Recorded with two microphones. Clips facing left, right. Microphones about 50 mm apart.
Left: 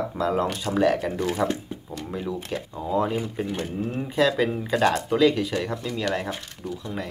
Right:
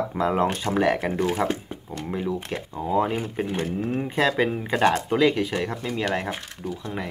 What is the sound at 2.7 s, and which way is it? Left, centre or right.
Speech, centre.